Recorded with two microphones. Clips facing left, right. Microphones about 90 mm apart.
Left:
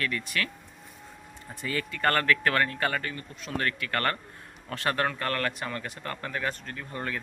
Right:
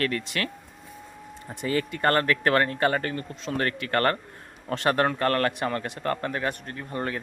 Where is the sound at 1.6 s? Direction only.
30° right (ahead or behind).